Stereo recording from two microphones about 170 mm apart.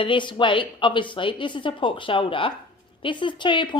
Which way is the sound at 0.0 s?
30° left (ahead or behind).